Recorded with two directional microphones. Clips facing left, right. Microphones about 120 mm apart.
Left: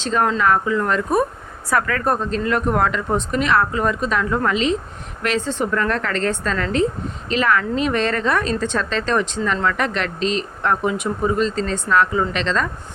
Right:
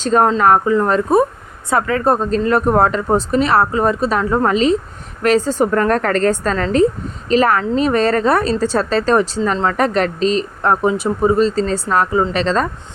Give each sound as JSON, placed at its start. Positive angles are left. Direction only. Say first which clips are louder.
{"t": 0.0, "sound": "speech", "louder": "right 5 dB", "side_deg": -40}